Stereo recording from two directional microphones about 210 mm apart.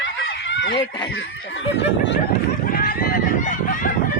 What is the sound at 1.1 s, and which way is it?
Speech, 55° left (ahead or behind).